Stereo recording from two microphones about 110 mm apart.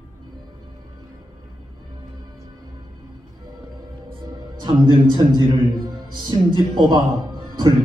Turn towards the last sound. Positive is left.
turn(degrees=-45)  # may be behind; listen again after turning